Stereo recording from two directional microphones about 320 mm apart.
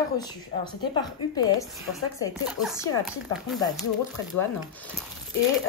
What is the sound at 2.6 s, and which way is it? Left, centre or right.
Speech, centre.